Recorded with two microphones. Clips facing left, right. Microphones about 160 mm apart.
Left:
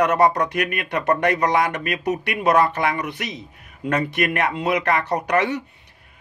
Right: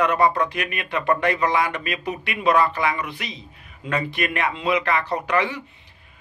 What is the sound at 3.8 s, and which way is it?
Speech, 50° left (ahead or behind).